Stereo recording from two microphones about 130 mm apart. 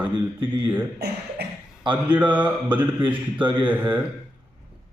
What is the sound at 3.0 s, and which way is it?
Speech, 40° right (ahead or behind).